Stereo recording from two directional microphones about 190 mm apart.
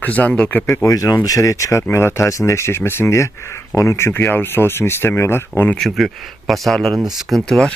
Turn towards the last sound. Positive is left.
turn(degrees=0)  # may be behind; listen again after turning